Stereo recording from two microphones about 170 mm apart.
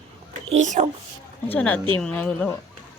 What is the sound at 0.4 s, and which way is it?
Speech, 45° right (ahead or behind).